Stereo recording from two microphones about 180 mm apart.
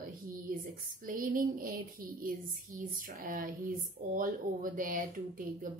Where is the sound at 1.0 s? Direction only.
50° right (ahead or behind).